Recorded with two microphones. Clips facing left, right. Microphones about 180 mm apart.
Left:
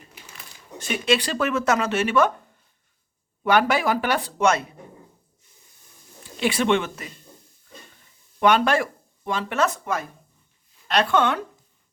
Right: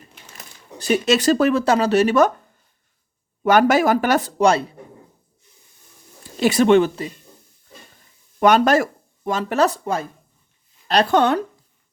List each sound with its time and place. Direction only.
0.3 s speech: 40° right (ahead or behind)
3.4 s speech: 45° right (ahead or behind)
6.4 s speech: 40° right (ahead or behind)
8.4 s speech: 40° right (ahead or behind)